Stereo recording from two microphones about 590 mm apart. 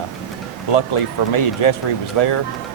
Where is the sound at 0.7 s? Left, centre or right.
Left.